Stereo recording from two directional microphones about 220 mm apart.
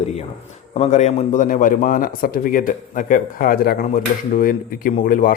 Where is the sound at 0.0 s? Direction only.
30° left (ahead or behind).